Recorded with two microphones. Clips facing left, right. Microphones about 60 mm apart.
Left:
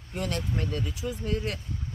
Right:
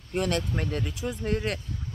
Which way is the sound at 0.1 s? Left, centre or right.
Right.